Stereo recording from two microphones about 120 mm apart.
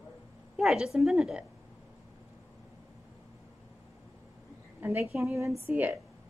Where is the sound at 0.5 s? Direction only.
5° right (ahead or behind).